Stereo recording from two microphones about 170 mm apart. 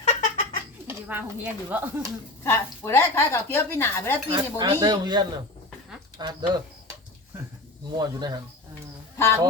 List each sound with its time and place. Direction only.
0.0 s cat: 45° left (ahead or behind)
0.9 s speech: 10° right (ahead or behind)
2.4 s a woman's voice: 15° left (ahead or behind)
4.3 s speech: 30° right (ahead or behind)
7.9 s speech: 25° right (ahead or behind)
9.1 s speech: 15° left (ahead or behind)